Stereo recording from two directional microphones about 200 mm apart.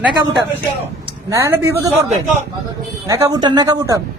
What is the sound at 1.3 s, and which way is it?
Speech, 10° right (ahead or behind).